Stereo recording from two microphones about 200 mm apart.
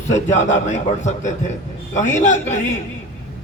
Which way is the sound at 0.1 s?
35° left (ahead or behind).